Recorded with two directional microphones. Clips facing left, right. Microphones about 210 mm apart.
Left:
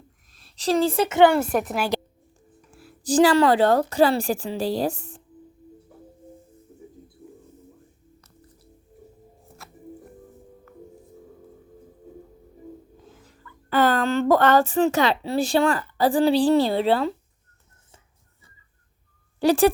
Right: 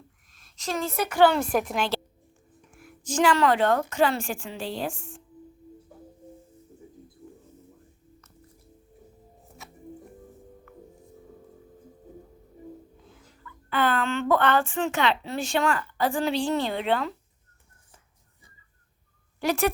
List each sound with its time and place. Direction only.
0.3 s a woman's voice: 35° left (ahead or behind)
1.3 s a woman's voice: 5° left (ahead or behind)
2.7 s speech: 35° left (ahead or behind)
9.6 s music: centre (ahead or behind)
10.7 s music: 40° left (ahead or behind)
13.1 s speech: 40° left (ahead or behind)
19.4 s speech: 30° left (ahead or behind)